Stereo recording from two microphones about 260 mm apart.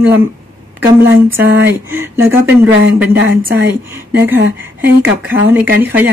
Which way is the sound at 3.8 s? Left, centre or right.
Centre.